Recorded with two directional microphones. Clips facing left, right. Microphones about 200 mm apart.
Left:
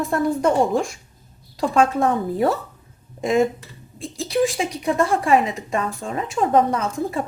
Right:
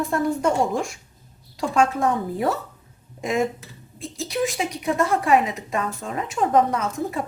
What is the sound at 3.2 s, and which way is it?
A woman's voice, 30° left (ahead or behind).